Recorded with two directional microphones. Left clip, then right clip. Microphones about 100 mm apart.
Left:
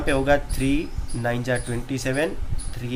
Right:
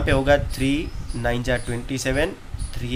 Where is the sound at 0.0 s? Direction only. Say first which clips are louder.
Right 2 dB; 25° right (ahead or behind).